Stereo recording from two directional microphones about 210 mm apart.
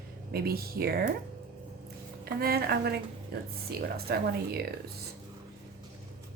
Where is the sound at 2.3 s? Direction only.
45° right (ahead or behind).